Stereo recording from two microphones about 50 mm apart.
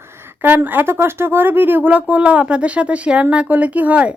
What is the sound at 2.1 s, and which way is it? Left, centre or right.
Speech, right.